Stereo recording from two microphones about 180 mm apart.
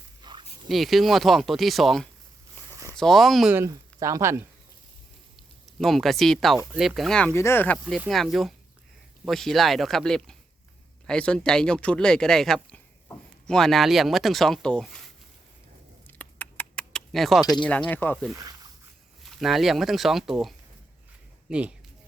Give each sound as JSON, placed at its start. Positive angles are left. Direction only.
{"t": 0.2, "sound": "a sound", "side_deg": -25}
{"t": 0.7, "sound": "speech", "side_deg": 0}
{"t": 2.6, "sound": "a sound", "side_deg": 15}
{"t": 3.0, "sound": "speech", "side_deg": 0}
{"t": 3.5, "sound": "speech", "side_deg": -15}
{"t": 5.8, "sound": "speech", "side_deg": 0}
{"t": 7.3, "sound": "speech", "side_deg": 15}
{"t": 16.0, "sound": "a sound", "side_deg": 10}
{"t": 17.5, "sound": "speech", "side_deg": 5}